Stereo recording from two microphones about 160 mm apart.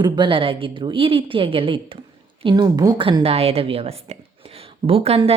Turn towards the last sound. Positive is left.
turn(degrees=-40)  # may be behind; listen again after turning